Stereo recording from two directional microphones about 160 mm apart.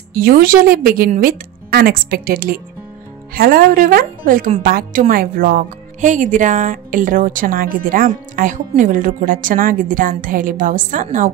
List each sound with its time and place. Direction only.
0.1 s a woman's voice: 65° right (ahead or behind)